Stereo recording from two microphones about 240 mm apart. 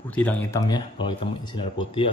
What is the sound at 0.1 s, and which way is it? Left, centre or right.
Speech, centre.